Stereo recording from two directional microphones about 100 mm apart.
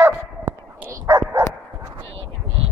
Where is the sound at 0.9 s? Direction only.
30° right (ahead or behind).